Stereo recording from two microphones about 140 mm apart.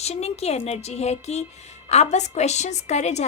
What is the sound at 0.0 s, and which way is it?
A woman's voice, 50° left (ahead or behind).